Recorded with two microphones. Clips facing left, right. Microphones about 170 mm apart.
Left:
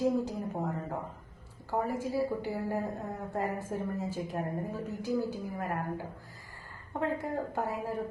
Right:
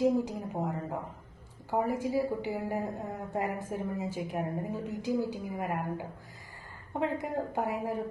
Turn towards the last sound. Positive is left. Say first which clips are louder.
# right 2 dB
turn(degrees=-15)  # may be behind; listen again after turning